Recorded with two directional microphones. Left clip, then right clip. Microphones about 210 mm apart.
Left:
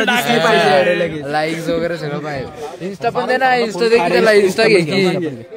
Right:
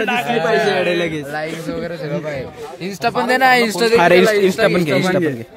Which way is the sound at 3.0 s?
55° right (ahead or behind).